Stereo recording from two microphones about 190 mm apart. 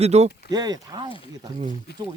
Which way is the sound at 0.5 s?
20° right (ahead or behind).